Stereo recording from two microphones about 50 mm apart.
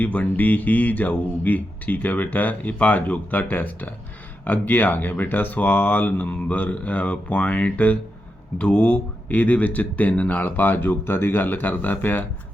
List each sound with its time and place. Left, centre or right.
0.0 s speech: left
10.6 s speech: left